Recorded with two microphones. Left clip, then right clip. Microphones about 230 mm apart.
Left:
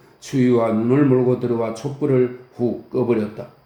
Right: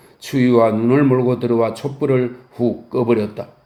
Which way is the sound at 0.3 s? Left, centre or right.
Right.